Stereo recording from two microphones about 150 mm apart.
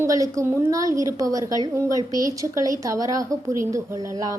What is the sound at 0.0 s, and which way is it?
A woman's voice, 20° right (ahead or behind).